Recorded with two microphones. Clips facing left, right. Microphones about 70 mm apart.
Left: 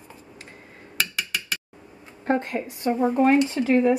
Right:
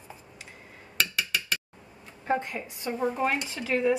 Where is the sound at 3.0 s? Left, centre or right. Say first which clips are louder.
Left 8 dB; centre.